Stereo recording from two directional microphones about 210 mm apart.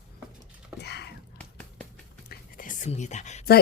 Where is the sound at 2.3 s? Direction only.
40° left (ahead or behind).